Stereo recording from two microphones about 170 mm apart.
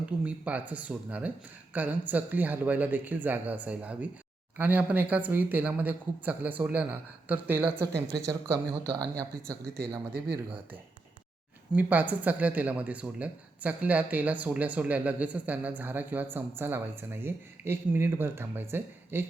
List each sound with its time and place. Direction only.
0.0 s speech: 10° right (ahead or behind)
11.7 s speech: 10° right (ahead or behind)